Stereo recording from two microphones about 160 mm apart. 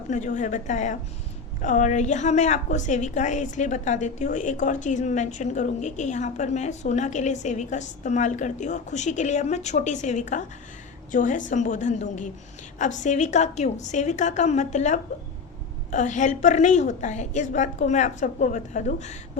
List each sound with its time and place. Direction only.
0.1 s a woman's voice: 50° left (ahead or behind)